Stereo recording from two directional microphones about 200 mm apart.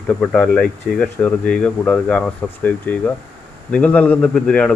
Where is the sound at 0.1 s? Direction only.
5° left (ahead or behind).